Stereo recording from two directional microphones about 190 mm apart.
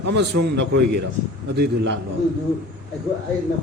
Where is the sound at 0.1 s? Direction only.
65° right (ahead or behind).